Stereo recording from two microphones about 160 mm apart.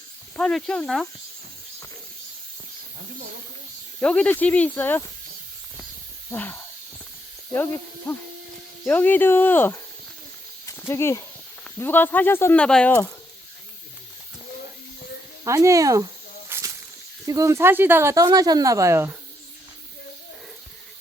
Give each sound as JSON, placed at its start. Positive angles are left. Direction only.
{"t": 0.3, "sound": "speech", "side_deg": 5}
{"t": 4.0, "sound": "speech", "side_deg": 10}
{"t": 6.3, "sound": "speech", "side_deg": 10}
{"t": 15.4, "sound": "speech", "side_deg": -20}
{"t": 16.5, "sound": "snake", "side_deg": -20}
{"t": 17.2, "sound": "speech", "side_deg": -20}